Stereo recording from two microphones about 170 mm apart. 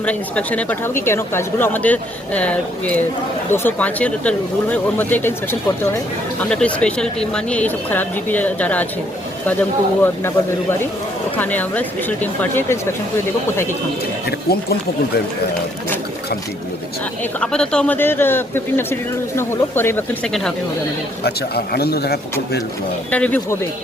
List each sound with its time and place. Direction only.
0.0 s speech: 10° left (ahead or behind)
17.4 s speech: 5° left (ahead or behind)
21.2 s speech: 70° left (ahead or behind)
23.1 s speech: 10° left (ahead or behind)